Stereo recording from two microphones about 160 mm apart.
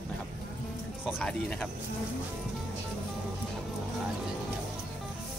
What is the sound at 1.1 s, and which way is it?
Speech, 5° left (ahead or behind).